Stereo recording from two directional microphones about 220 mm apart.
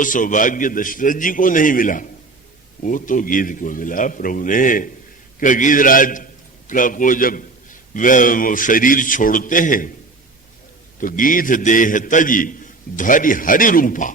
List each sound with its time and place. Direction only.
0.0 s a man's voice: 35° left (ahead or behind)
11.0 s a man's voice: 40° left (ahead or behind)